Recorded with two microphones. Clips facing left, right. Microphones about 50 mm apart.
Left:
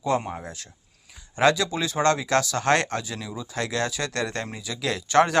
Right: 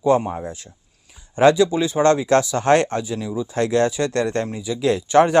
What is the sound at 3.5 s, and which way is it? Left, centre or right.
Speech, right.